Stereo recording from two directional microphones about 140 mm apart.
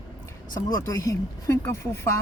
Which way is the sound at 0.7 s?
25° left (ahead or behind).